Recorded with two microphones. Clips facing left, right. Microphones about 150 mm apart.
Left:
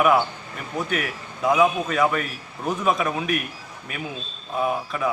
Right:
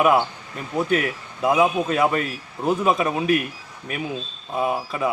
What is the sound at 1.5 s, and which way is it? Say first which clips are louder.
A man's voice: right 1 dB; 25° right (ahead or behind).